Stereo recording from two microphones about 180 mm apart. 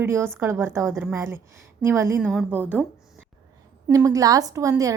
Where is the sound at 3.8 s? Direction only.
15° right (ahead or behind).